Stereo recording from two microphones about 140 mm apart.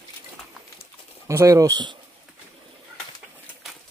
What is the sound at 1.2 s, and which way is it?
Speech, 25° right (ahead or behind).